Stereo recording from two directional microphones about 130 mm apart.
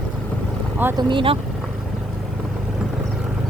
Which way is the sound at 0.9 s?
40° right (ahead or behind).